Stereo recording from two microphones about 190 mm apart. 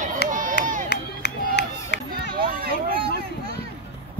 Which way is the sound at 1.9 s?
60° left (ahead or behind).